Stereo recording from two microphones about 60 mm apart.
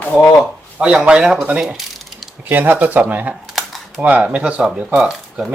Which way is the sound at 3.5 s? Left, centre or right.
Centre.